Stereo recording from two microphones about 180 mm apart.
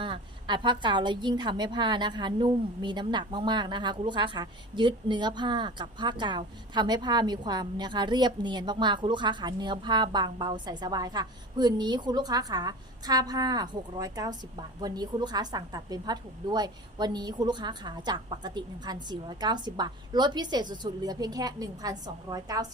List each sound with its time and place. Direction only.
0.0 s a woman's voice: 25° right (ahead or behind)